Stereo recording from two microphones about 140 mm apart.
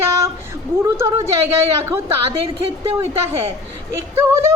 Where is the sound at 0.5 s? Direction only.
20° right (ahead or behind).